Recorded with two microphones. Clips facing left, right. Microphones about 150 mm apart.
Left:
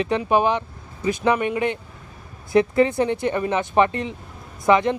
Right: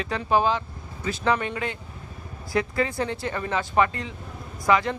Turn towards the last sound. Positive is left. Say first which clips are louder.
# left 4 dB
turn(degrees=20)  # may be behind; listen again after turning